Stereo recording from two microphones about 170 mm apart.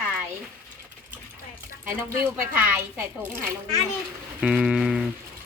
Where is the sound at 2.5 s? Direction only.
15° right (ahead or behind).